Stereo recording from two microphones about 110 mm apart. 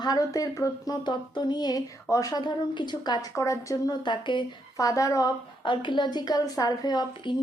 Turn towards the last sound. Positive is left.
turn(degrees=45)  # may be behind; listen again after turning